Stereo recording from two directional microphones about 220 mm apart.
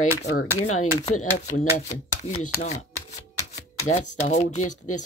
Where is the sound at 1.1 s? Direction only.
35° left (ahead or behind).